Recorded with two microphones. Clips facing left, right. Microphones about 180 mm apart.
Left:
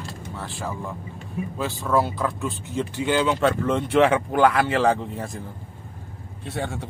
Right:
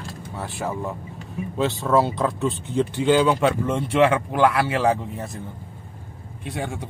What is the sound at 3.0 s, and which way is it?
Speech, 15° right (ahead or behind).